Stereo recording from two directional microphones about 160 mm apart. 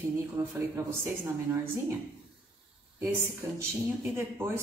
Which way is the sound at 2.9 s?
15° right (ahead or behind).